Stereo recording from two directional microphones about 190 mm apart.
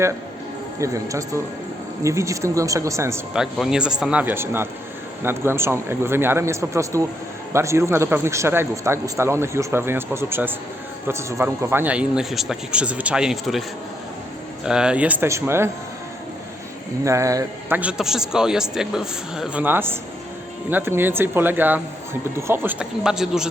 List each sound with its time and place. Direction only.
0.8 s a man's voice: 15° right (ahead or behind)
3.3 s a man's voice: 5° right (ahead or behind)
17.0 s a man's voice: 15° right (ahead or behind)